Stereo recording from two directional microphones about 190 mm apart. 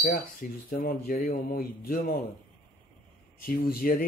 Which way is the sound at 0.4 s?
45° left (ahead or behind).